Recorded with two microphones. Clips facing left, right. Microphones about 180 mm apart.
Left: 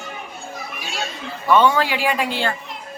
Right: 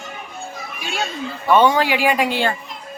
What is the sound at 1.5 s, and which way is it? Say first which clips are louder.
Speech: right 1 dB; 15° right (ahead or behind).